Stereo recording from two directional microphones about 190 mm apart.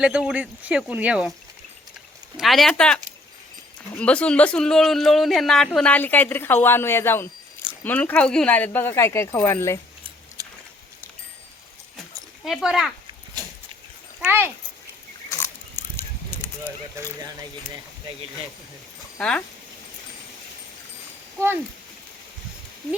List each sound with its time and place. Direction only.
0.0 s speech: 5° right (ahead or behind)
2.4 s speech: centre (ahead or behind)
10.4 s a sound: 20° right (ahead or behind)
12.5 s speech: 5° right (ahead or behind)
14.3 s speech: 10° right (ahead or behind)
15.4 s a sound: 10° left (ahead or behind)
17.0 s speech: 15° right (ahead or behind)